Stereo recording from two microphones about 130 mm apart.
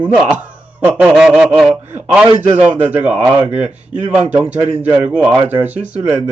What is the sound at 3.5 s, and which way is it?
Speech, 55° right (ahead or behind).